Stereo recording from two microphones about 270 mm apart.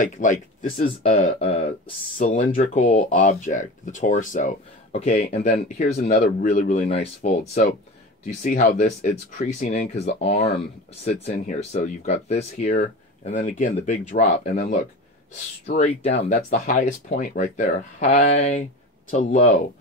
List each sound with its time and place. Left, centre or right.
0.0 s speech: left